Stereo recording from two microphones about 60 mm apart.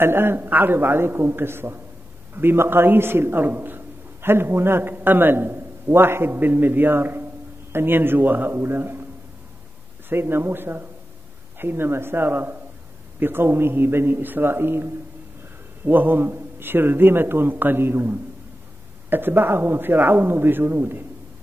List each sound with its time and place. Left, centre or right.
0.0 s a man's voice: right
10.0 s a man's voice: right